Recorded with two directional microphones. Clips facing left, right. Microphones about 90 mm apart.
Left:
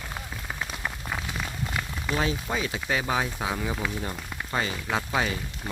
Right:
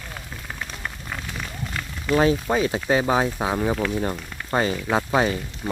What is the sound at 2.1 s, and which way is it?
Speech, 45° right (ahead or behind).